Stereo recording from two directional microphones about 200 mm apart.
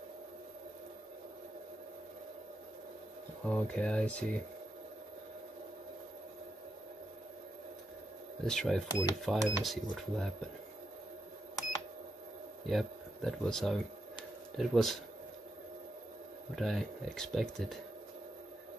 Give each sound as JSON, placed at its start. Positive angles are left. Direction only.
{"t": 3.4, "sound": "speech", "side_deg": 5}
{"t": 8.5, "sound": "speech", "side_deg": 0}
{"t": 8.8, "sound": "speech", "side_deg": 20}
{"t": 9.2, "sound": "speech", "side_deg": 0}
{"t": 12.6, "sound": "speech", "side_deg": 0}
{"t": 16.5, "sound": "speech", "side_deg": 0}